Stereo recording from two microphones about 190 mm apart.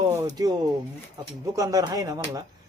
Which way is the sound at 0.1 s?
15° right (ahead or behind).